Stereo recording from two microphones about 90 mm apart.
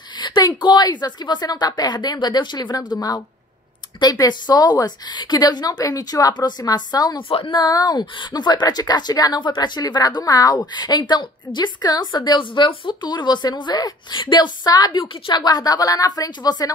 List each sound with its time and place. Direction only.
0.2 s speech: 50° left (ahead or behind)
7.2 s speech: 75° left (ahead or behind); by 16.7 s 45° left (ahead or behind)